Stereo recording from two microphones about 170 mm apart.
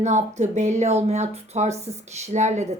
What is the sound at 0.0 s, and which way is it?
A woman's voice, 45° right (ahead or behind).